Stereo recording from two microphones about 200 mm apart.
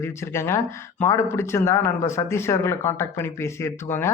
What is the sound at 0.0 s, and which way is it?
Speech, 15° left (ahead or behind).